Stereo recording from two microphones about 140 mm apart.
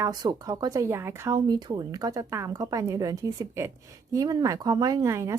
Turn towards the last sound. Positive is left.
turn(degrees=-20)  # may be behind; listen again after turning